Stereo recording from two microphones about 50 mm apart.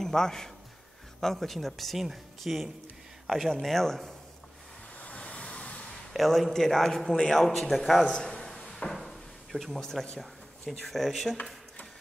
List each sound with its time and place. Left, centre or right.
0.0 s speech: centre
4.9 s vehicle: left
6.1 s speech: centre
8.0 s a man's voice: centre
8.4 s a sound: centre
8.9 s drawer open or close: centre
9.8 s speech: centre